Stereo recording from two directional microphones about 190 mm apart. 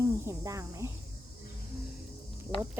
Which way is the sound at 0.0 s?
15° right (ahead or behind).